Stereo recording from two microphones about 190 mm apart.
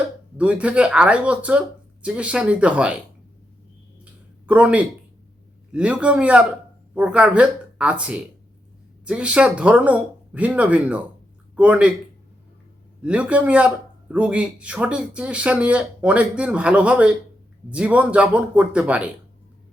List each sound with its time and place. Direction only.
0.3 s a man's voice: 5° right (ahead or behind)
4.4 s a man's voice: 5° right (ahead or behind)
13.0 s a man's voice: 5° right (ahead or behind)